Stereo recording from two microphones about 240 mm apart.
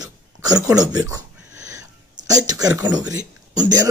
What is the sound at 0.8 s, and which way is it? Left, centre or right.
Speech, centre.